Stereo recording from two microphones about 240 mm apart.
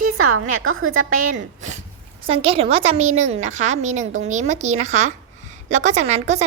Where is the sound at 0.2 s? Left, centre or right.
Right.